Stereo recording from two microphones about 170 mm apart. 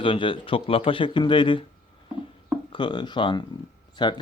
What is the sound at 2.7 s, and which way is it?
Speech, 30° left (ahead or behind).